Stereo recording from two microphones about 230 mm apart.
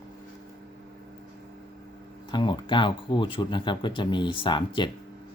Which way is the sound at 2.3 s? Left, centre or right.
Centre.